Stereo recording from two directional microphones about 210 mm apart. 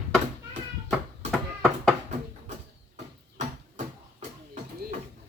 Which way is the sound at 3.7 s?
35° right (ahead or behind).